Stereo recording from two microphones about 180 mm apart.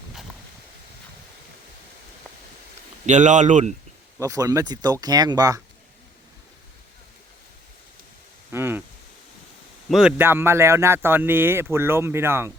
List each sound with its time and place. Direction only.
3.1 s speech: 40° right (ahead or behind)
4.2 s speech: 20° right (ahead or behind)
8.5 s a man's voice: 10° right (ahead or behind)
9.9 s a man's voice: 5° right (ahead or behind)